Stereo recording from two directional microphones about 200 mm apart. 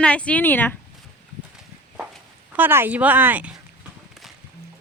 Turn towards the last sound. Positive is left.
turn(degrees=-10)  # may be behind; listen again after turning